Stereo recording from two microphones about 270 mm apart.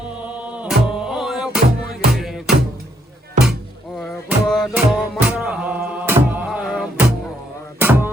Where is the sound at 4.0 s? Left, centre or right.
Centre.